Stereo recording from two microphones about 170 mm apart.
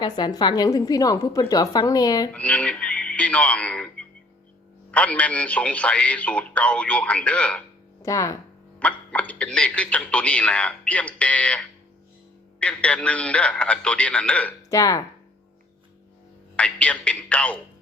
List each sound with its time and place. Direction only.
0.0 s a woman's voice: 25° left (ahead or behind)
2.3 s speech: 10° left (ahead or behind)
8.0 s a woman's voice: 20° left (ahead or behind)
8.8 s speech: 10° left (ahead or behind)
14.7 s a woman's voice: 20° left (ahead or behind)
16.6 s speech: 5° left (ahead or behind)